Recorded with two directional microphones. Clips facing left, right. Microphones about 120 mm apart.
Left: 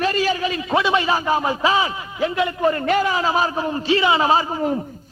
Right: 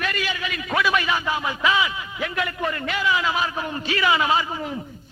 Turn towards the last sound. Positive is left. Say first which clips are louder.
# left 7 dB
turn(degrees=45)  # may be behind; listen again after turning